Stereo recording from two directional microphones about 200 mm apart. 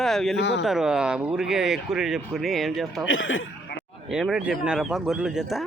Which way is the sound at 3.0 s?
75° left (ahead or behind).